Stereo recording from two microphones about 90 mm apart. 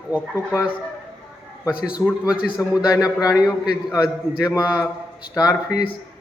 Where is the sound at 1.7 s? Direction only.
10° right (ahead or behind).